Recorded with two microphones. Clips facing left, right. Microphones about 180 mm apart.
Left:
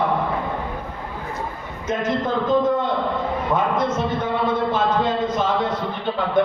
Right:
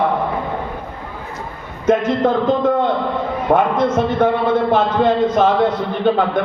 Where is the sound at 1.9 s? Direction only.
60° right (ahead or behind).